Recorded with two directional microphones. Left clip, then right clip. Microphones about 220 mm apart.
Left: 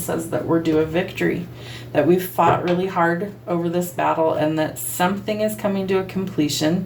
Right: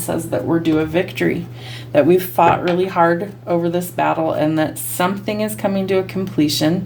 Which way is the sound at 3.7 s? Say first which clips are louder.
Right 2 dB; 55° right (ahead or behind).